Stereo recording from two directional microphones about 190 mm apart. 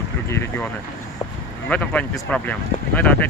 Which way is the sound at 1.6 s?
5° left (ahead or behind).